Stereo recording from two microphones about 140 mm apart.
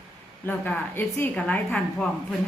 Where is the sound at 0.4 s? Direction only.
10° left (ahead or behind).